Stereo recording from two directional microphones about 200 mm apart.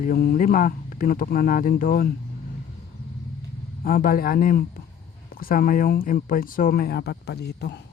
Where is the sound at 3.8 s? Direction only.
45° left (ahead or behind).